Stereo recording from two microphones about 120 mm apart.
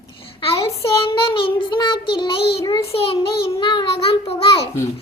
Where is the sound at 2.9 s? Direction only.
50° left (ahead or behind).